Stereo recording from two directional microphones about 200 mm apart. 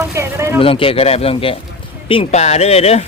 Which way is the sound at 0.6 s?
25° left (ahead or behind).